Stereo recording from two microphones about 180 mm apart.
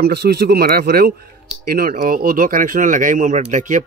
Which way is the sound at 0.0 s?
60° right (ahead or behind).